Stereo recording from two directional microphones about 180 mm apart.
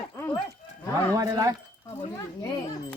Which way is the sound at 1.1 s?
20° right (ahead or behind).